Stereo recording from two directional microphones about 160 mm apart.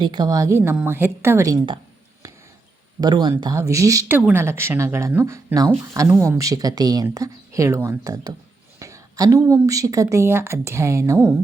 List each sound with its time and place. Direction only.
0.0 s a woman's voice: 30° right (ahead or behind)
3.0 s speech: 25° right (ahead or behind)